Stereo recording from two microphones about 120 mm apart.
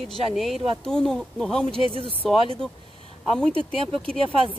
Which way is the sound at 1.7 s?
50° right (ahead or behind).